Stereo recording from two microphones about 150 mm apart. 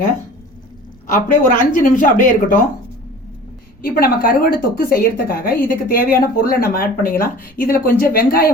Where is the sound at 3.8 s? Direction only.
75° left (ahead or behind).